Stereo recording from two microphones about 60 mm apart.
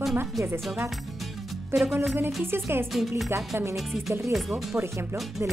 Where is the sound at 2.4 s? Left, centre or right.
Right.